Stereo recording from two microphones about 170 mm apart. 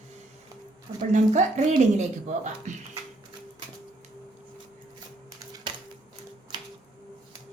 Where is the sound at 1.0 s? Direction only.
45° right (ahead or behind).